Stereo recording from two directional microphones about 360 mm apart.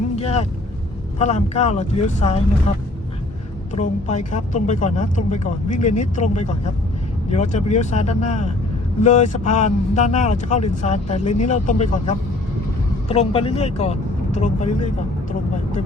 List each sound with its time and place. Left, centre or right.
0.2 s speech: centre
3.8 s speech: centre